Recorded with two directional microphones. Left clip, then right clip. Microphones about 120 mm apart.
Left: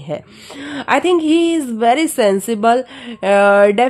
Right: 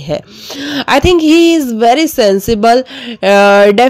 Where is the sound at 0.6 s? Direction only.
45° right (ahead or behind).